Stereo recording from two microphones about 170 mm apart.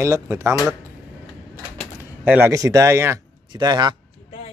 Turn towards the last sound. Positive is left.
turn(degrees=-25)  # may be behind; listen again after turning